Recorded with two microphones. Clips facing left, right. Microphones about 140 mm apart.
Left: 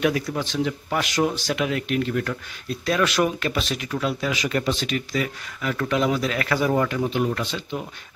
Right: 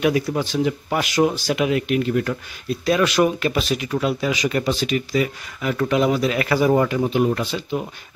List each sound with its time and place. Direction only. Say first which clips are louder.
0.0 s speech: right 3 dB; 15° right (ahead or behind)